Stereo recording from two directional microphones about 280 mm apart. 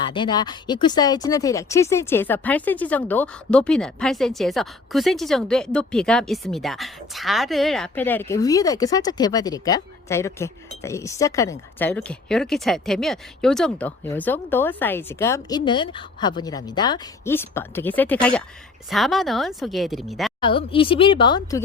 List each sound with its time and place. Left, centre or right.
0.0 s speech: centre
20.4 s speech: centre